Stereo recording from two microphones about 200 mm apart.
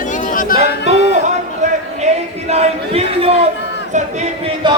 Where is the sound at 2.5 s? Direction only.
30° right (ahead or behind).